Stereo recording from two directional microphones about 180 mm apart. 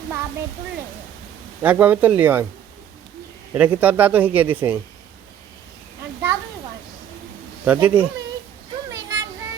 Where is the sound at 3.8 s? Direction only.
10° right (ahead or behind).